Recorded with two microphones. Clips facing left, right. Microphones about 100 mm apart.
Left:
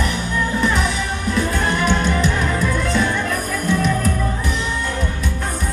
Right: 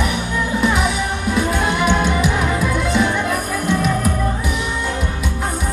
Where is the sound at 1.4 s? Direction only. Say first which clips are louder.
Right 1 dB; 15° right (ahead or behind).